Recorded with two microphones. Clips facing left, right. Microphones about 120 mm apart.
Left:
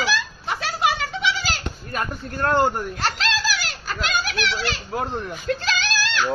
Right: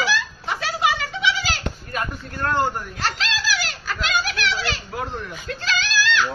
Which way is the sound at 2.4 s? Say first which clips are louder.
Left 3 dB; 40° left (ahead or behind).